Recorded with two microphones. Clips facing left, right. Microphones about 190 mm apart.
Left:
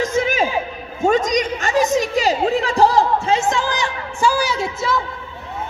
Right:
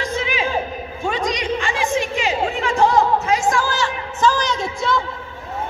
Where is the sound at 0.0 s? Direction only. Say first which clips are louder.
Left 5 dB; 45° left (ahead or behind).